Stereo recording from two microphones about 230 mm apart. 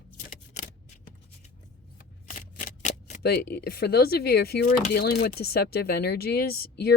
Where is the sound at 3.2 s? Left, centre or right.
Left.